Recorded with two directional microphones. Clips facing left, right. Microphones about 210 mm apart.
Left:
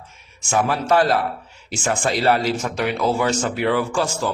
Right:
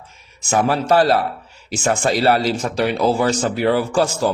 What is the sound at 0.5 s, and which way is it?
Speech, 35° right (ahead or behind).